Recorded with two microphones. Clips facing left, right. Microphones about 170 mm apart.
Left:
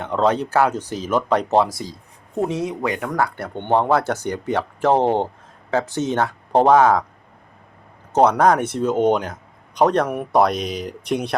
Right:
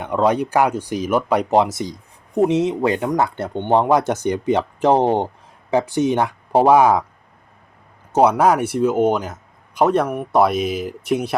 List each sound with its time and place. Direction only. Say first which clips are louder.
0.0 s speech: right 1 dB; 10° right (ahead or behind)
8.1 s speech: right 1 dB; 10° right (ahead or behind)